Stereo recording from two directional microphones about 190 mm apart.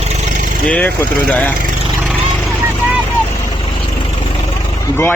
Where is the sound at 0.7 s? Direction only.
10° left (ahead or behind).